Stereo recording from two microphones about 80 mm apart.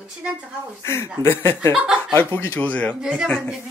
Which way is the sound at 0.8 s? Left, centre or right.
Left.